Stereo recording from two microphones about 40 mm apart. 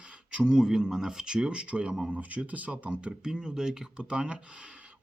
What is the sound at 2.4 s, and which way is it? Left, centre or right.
Speech, right.